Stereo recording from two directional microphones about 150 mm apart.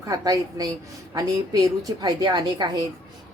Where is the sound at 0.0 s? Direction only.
25° right (ahead or behind).